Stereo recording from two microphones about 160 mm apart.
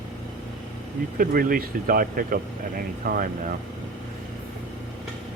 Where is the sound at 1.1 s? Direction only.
65° right (ahead or behind).